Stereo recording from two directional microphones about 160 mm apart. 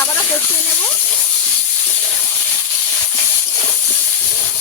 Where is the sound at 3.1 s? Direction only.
20° left (ahead or behind).